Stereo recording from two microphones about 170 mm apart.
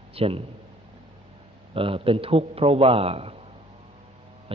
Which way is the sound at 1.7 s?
30° right (ahead or behind).